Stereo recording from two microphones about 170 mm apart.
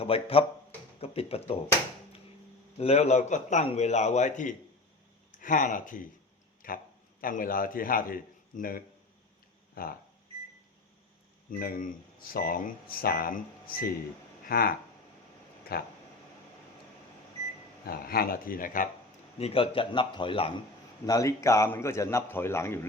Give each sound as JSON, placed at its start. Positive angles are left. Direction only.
{"t": 0.0, "sound": "a man's voice", "side_deg": 35}
{"t": 2.7, "sound": "a man's voice", "side_deg": 40}
{"t": 11.6, "sound": "speech", "side_deg": 55}
{"t": 17.8, "sound": "speech", "side_deg": 60}
{"t": 19.4, "sound": "a man's voice", "side_deg": 35}
{"t": 21.1, "sound": "a man's voice", "side_deg": 20}